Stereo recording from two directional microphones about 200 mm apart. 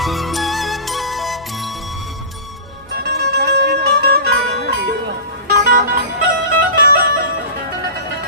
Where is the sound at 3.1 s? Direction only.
50° right (ahead or behind).